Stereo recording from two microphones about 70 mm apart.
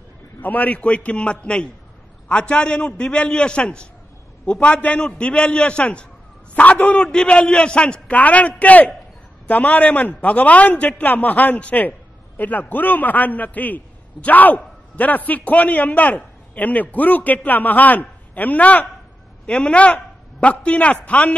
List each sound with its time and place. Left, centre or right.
0.4 s a man's voice: left